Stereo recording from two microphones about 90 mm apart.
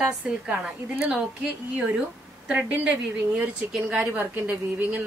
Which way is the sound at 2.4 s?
15° right (ahead or behind).